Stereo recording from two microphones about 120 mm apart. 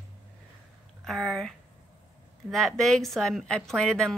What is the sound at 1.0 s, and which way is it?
Speech, centre (ahead or behind).